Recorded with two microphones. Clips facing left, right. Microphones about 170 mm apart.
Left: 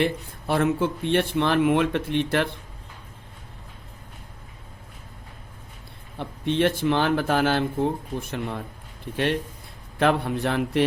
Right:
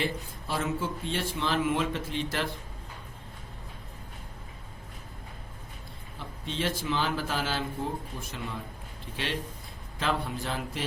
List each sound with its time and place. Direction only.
0.0 s speech: 60° left (ahead or behind)
6.1 s speech: 60° left (ahead or behind)